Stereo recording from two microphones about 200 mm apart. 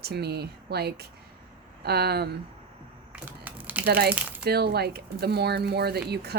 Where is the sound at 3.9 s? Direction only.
50° right (ahead or behind).